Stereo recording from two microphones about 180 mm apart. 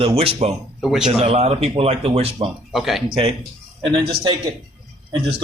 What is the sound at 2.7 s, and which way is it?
Speech, centre (ahead or behind).